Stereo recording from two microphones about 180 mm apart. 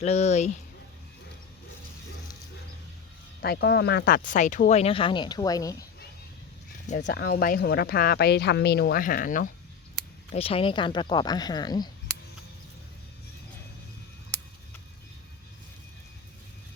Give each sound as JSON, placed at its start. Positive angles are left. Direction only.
{"t": 0.0, "sound": "speech", "side_deg": 40}
{"t": 3.4, "sound": "speech", "side_deg": 60}
{"t": 6.8, "sound": "speech", "side_deg": 45}
{"t": 7.1, "sound": "a woman's voice", "side_deg": 60}
{"t": 10.3, "sound": "speech", "side_deg": 30}